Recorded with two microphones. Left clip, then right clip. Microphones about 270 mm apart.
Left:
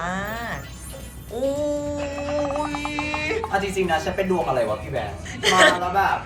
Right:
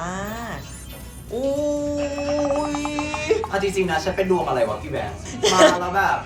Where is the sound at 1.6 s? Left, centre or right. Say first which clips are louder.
Right 2 dB; centre.